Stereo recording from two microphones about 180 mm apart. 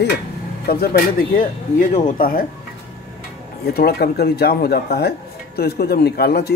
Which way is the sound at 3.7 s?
60° left (ahead or behind).